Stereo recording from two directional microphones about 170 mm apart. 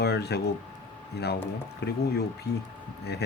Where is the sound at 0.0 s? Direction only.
75° left (ahead or behind).